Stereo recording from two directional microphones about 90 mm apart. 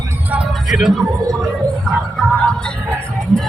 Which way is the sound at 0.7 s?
Centre (ahead or behind).